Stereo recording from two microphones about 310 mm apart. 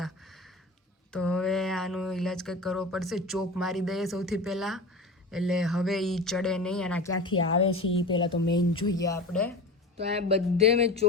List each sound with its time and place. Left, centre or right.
1.1 s speech: centre
7.3 s a woman's voice: left
8.0 s speech: centre
10.0 s speech: centre